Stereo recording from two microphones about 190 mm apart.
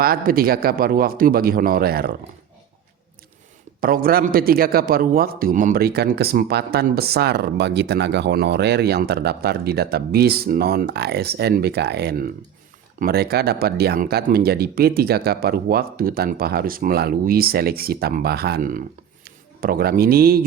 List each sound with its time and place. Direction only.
0.0 s speech: 50° right (ahead or behind)
3.8 s a man's voice: 50° right (ahead or behind)